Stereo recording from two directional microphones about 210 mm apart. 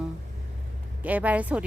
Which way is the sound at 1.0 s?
5° right (ahead or behind).